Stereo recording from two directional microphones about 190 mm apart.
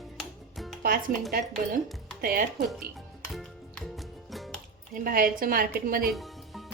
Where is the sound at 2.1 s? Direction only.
50° right (ahead or behind).